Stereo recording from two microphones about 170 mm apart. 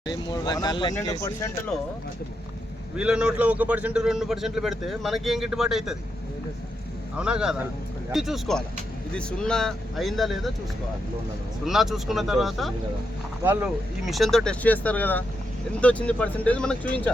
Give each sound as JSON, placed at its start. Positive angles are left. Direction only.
{"t": 0.1, "sound": "speech", "side_deg": 25}
{"t": 1.7, "sound": "a man's voice", "side_deg": 0}
{"t": 2.9, "sound": "a man's voice", "side_deg": -5}
{"t": 7.2, "sound": "a man's voice", "side_deg": -5}
{"t": 11.6, "sound": "a man's voice", "side_deg": 0}
{"t": 13.4, "sound": "speech", "side_deg": -10}
{"t": 14.0, "sound": "speech", "side_deg": 0}